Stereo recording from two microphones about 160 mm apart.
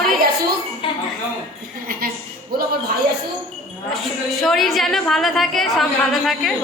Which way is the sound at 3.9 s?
Centre (ahead or behind).